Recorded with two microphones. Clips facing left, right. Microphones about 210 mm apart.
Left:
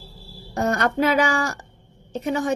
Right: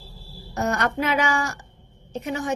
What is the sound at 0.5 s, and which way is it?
A woman's voice, 30° left (ahead or behind).